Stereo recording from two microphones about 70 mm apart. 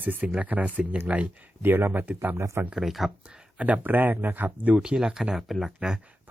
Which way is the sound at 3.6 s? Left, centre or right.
Right.